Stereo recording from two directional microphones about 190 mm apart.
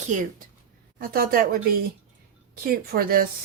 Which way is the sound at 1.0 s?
50° right (ahead or behind).